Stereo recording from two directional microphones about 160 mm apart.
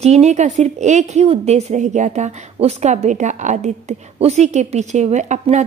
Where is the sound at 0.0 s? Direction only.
45° right (ahead or behind).